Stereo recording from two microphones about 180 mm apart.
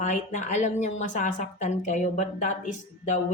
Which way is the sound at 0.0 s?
40° left (ahead or behind).